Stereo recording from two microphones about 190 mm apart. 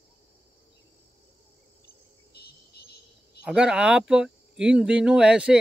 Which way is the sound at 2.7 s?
55° left (ahead or behind).